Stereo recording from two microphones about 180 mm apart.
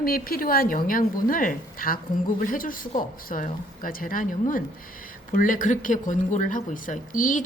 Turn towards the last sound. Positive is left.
turn(degrees=45)  # may be behind; listen again after turning